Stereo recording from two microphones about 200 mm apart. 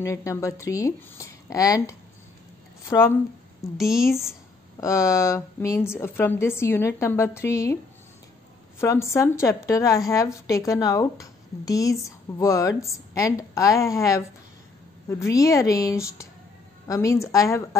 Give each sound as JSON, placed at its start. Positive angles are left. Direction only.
{"t": 0.0, "sound": "a woman's voice", "side_deg": 15}
{"t": 3.7, "sound": "a woman's voice", "side_deg": 0}
{"t": 4.7, "sound": "a woman's voice", "side_deg": 15}